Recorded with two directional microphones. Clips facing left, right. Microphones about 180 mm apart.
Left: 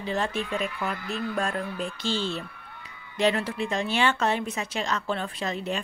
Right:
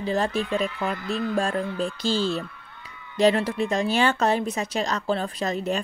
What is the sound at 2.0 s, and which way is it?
Speech, 40° right (ahead or behind).